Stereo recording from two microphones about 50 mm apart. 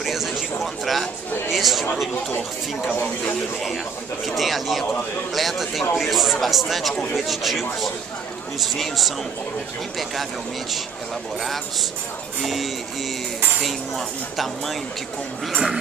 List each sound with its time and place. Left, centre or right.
0.0 s a sound: centre
1.5 s speech: centre
2.9 s speech: left
4.4 s speech: centre
12.4 s speech: centre